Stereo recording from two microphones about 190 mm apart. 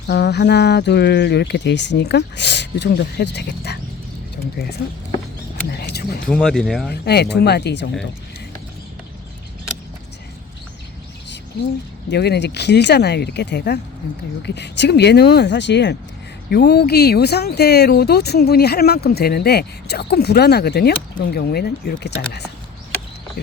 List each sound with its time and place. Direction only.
0.1 s speech: 60° left (ahead or behind)
5.7 s a sound: 55° left (ahead or behind)
6.2 s speech: 5° left (ahead or behind)
6.9 s speech: 60° left (ahead or behind)
12.1 s speech: 60° left (ahead or behind)